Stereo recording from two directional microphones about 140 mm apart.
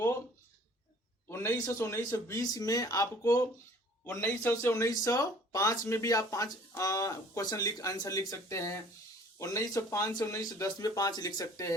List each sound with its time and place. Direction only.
1.3 s speech: 20° left (ahead or behind)
4.0 s speech: 15° left (ahead or behind)